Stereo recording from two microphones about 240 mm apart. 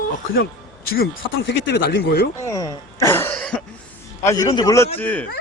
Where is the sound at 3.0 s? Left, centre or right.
Centre.